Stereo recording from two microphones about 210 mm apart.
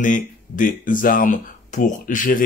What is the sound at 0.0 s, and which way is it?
Speech, 40° left (ahead or behind).